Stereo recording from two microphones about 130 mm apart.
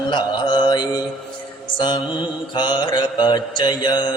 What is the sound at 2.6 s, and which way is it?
Mantra, 35° left (ahead or behind).